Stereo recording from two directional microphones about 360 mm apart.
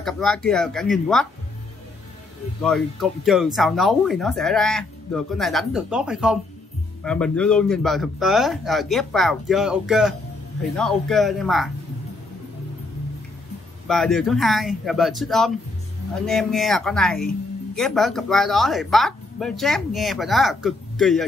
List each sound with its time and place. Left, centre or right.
0.0 s speech: centre
2.6 s speech: centre
13.8 s speech: centre